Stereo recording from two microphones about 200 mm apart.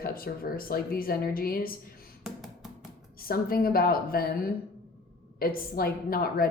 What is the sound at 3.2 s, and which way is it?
A woman's voice, 50° left (ahead or behind).